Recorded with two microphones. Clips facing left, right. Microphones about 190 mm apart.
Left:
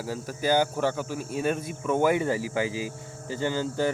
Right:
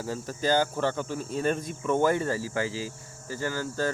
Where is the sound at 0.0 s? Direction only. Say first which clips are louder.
Even; 10° left (ahead or behind).